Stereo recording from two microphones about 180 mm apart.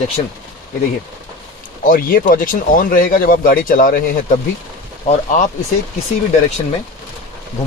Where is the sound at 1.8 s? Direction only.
50° left (ahead or behind).